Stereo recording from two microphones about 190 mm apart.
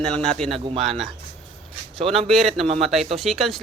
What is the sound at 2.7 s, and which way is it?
Speech, 35° right (ahead or behind).